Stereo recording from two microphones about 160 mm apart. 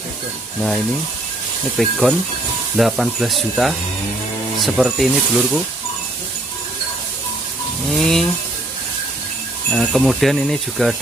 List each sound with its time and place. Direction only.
0.6 s speech: 5° left (ahead or behind)
8.0 s speech: centre (ahead or behind)
9.7 s speech: centre (ahead or behind)